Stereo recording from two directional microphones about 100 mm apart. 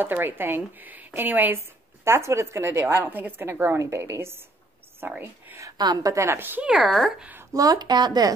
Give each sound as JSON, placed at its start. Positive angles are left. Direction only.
{"t": 0.0, "sound": "speech", "side_deg": -20}
{"t": 5.8, "sound": "a woman's voice", "side_deg": -45}
{"t": 6.1, "sound": "speech", "side_deg": -25}
{"t": 7.5, "sound": "speech", "side_deg": -35}